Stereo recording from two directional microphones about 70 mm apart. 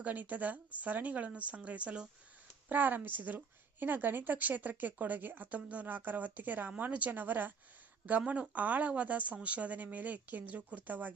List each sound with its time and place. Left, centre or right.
0.0 s a woman's voice: right